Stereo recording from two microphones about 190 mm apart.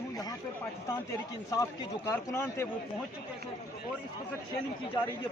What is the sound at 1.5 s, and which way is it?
A man's voice, 15° left (ahead or behind).